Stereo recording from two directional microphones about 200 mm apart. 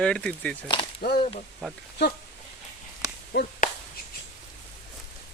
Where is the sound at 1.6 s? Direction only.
5° left (ahead or behind).